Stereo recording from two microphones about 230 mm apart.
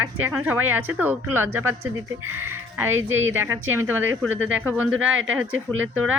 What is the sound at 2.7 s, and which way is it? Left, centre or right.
A woman's voice, centre.